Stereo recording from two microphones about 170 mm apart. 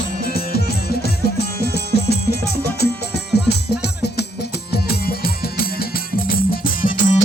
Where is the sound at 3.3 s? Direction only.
75° left (ahead or behind).